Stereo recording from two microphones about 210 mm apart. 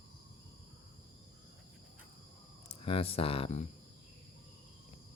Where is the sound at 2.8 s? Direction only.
25° left (ahead or behind).